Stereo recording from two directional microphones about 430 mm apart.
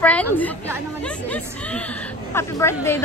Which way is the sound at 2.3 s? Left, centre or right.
Centre.